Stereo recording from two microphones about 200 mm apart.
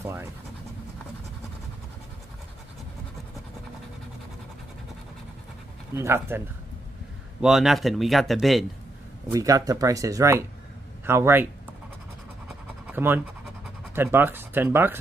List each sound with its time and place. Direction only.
0.0 s speech: 10° right (ahead or behind)
5.9 s speech: 15° right (ahead or behind)
7.4 s speech: centre (ahead or behind)
9.3 s speech: 15° right (ahead or behind)
12.4 s pant: 10° right (ahead or behind)
13.9 s speech: 10° right (ahead or behind)